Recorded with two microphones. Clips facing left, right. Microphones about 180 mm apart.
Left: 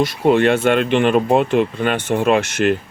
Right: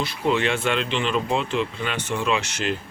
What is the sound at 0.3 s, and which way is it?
Speech, 55° left (ahead or behind).